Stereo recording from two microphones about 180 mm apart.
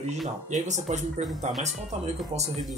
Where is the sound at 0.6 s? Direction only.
40° right (ahead or behind).